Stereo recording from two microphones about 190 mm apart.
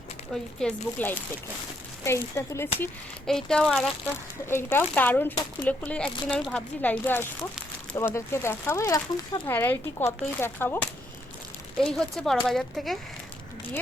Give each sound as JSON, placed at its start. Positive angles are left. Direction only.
{"t": 0.6, "sound": "speech", "side_deg": 10}
{"t": 2.8, "sound": "speech", "side_deg": 5}
{"t": 4.4, "sound": "speech", "side_deg": 10}